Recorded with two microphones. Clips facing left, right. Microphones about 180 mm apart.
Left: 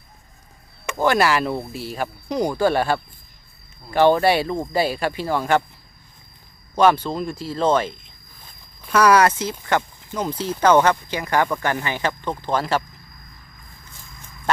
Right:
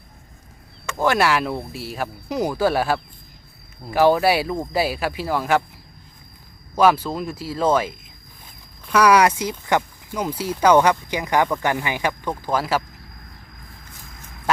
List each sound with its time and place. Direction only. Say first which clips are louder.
0.9 s speech: left 1 dB; centre (ahead or behind)
6.7 s speech: even; 5° right (ahead or behind)
9.0 s speech: even; 10° right (ahead or behind)